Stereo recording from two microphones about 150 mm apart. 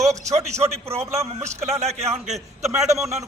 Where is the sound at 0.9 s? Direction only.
45° right (ahead or behind).